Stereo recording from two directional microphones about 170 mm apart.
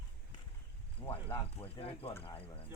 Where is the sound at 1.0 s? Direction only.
30° left (ahead or behind).